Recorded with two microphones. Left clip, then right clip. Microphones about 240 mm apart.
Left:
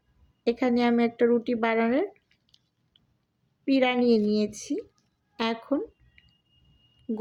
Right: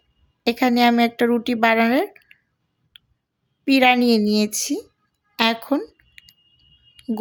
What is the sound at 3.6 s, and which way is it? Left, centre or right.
Speech, right.